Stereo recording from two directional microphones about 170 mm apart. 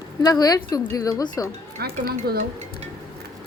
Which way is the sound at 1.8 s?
65° right (ahead or behind).